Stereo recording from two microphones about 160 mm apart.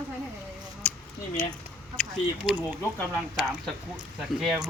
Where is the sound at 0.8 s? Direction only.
10° left (ahead or behind).